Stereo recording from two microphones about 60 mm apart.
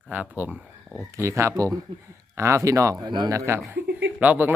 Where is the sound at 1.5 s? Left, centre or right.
Right.